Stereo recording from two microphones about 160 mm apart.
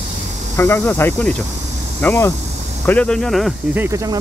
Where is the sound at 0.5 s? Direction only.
15° left (ahead or behind).